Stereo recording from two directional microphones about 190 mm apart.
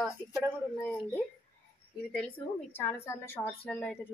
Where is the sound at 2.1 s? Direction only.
10° left (ahead or behind).